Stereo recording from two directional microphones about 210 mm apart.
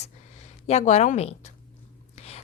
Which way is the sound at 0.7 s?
30° left (ahead or behind).